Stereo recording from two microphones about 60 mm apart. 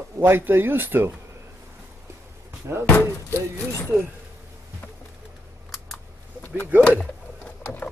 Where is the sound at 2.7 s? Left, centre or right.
Right.